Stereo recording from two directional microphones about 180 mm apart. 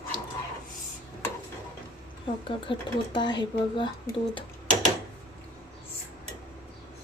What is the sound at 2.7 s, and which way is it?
Speech, 25° left (ahead or behind).